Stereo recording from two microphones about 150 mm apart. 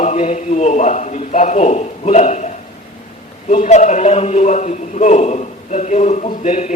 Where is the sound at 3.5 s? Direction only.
55° left (ahead or behind).